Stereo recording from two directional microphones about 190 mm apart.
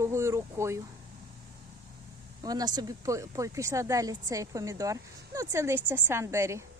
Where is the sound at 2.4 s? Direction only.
20° right (ahead or behind).